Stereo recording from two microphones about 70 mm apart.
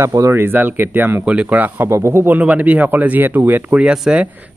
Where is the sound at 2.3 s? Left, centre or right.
Right.